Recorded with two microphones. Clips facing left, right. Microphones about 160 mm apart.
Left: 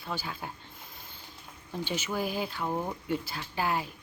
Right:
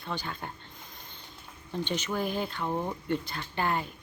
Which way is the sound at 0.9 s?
5° left (ahead or behind).